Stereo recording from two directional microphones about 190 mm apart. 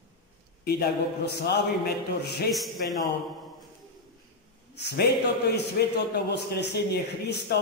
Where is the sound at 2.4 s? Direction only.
Centre (ahead or behind).